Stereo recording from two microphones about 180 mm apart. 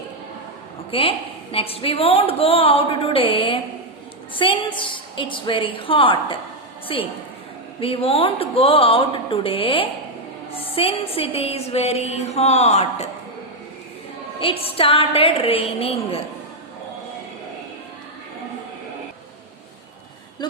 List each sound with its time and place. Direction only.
0.9 s a woman's voice: 30° left (ahead or behind)
14.6 s a woman's voice: 30° left (ahead or behind)